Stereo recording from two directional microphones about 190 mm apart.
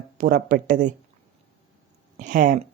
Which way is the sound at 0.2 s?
50° right (ahead or behind).